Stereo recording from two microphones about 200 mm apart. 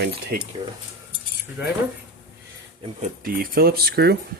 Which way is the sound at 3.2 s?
50° right (ahead or behind).